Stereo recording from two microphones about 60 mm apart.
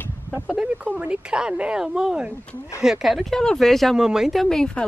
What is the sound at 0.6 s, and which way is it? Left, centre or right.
Speech, right.